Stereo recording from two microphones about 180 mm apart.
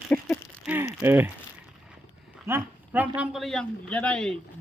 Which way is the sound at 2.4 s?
10° right (ahead or behind).